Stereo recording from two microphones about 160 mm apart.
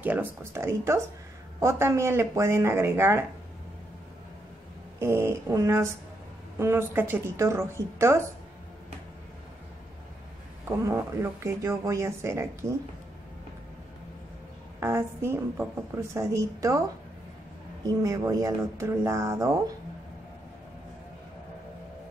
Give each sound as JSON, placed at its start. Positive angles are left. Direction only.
{"t": 0.0, "sound": "a woman's voice", "side_deg": -10}
{"t": 4.9, "sound": "a woman's voice", "side_deg": -15}
{"t": 10.8, "sound": "a woman's voice", "side_deg": -15}
{"t": 14.8, "sound": "a woman's voice", "side_deg": -15}
{"t": 17.8, "sound": "speech", "side_deg": -20}